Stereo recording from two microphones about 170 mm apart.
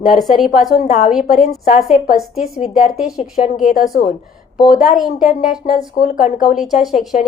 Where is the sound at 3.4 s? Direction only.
45° left (ahead or behind).